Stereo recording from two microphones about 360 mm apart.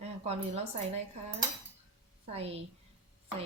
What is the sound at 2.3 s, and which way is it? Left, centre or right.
Speech, centre.